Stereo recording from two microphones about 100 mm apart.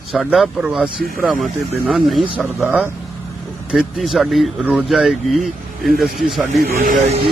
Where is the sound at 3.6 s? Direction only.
5° right (ahead or behind).